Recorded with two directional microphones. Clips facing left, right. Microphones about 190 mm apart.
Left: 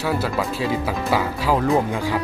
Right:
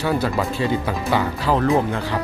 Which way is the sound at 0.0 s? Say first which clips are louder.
Right 2 dB; 5° left (ahead or behind).